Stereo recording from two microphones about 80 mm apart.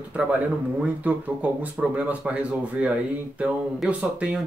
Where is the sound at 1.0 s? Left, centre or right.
Right.